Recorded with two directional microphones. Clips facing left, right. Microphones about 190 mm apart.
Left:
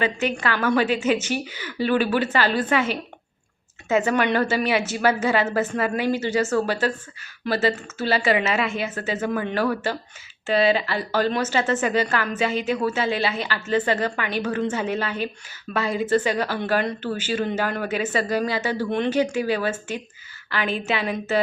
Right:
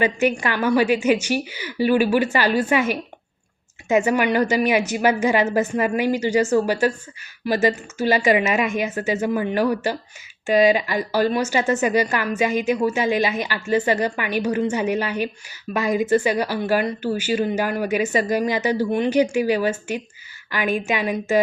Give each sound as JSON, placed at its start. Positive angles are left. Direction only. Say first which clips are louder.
{"t": 0.0, "sound": "speech", "louder": "right 4 dB", "side_deg": -15}